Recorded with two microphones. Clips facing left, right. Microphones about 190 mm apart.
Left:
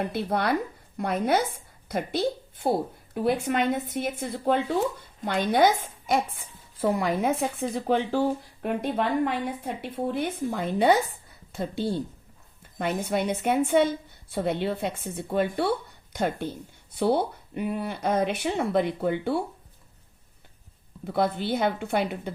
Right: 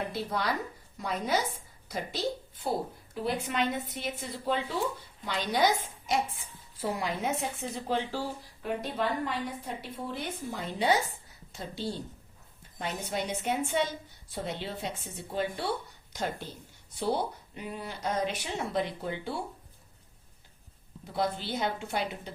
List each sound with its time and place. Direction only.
0.1 s a woman's voice: 60° left (ahead or behind)
21.1 s a woman's voice: 55° left (ahead or behind)